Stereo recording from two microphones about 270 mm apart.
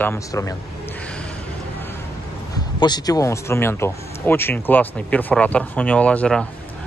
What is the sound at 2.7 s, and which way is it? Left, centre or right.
Speech, centre.